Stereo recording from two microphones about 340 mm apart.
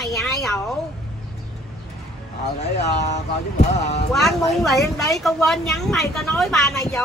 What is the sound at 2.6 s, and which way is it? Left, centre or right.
Speech, centre.